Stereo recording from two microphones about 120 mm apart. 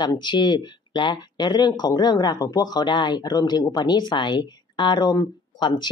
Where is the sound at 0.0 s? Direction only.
40° left (ahead or behind).